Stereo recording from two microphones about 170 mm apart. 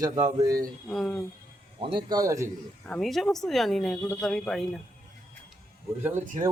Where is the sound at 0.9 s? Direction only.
5° left (ahead or behind).